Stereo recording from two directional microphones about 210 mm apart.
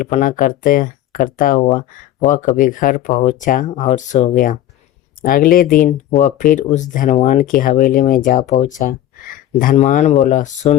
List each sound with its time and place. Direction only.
0.0 s speech: 40° left (ahead or behind)